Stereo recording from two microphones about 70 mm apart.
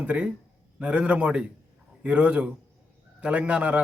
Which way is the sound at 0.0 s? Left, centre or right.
Centre.